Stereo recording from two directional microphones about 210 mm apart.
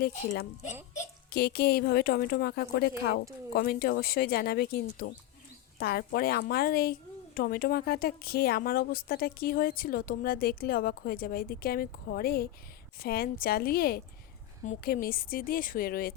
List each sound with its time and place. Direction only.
1.3 s speech: 50° left (ahead or behind)